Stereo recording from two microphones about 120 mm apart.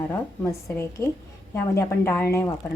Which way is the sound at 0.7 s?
25° left (ahead or behind).